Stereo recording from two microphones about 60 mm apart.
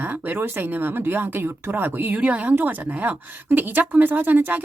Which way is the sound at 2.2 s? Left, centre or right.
Right.